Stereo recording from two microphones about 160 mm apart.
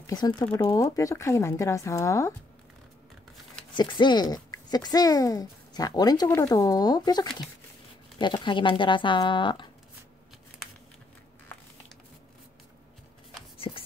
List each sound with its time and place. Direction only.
0.0 s speech: 25° left (ahead or behind)
3.7 s speech: 30° left (ahead or behind)
13.7 s writing: 30° left (ahead or behind)